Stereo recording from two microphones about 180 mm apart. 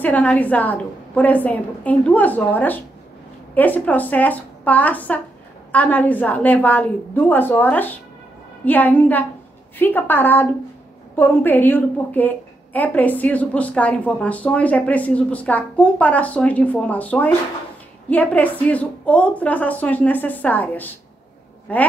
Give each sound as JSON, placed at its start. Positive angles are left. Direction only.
{"t": 0.0, "sound": "a woman's voice", "side_deg": 10}